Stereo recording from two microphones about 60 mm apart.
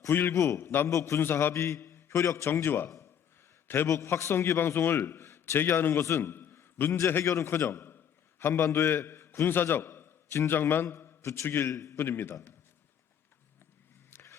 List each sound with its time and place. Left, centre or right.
0.1 s a man's voice: left
0.3 s a man's voice: left
0.6 s a man's voice: left
0.9 s a man's voice: left
1.2 s a man's voice: left
1.5 s a man's voice: left
2.6 s a man's voice: left
3.8 s a man's voice: left
7.3 s a man's voice: left
7.5 s a sound: left
8.6 s a man's voice: left
11.4 s a man's voice: left
11.7 s a man's voice: left
11.9 s a man's voice: left